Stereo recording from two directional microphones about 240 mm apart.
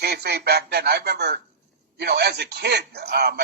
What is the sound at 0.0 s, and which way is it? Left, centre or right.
A man's voice, right.